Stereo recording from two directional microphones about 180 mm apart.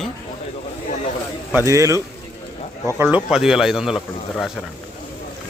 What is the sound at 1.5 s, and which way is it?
A man's voice, 15° right (ahead or behind).